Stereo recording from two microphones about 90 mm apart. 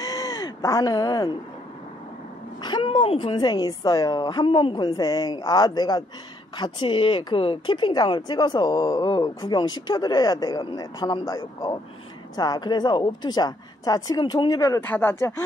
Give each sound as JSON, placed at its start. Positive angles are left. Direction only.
{"t": 0.0, "sound": "a sound", "side_deg": 45}
{"t": 2.6, "sound": "speech", "side_deg": 60}
{"t": 6.5, "sound": "speech", "side_deg": 60}
{"t": 14.8, "sound": "speech", "side_deg": 20}